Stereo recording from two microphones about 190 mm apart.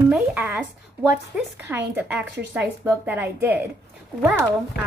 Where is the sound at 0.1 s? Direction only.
10° right (ahead or behind).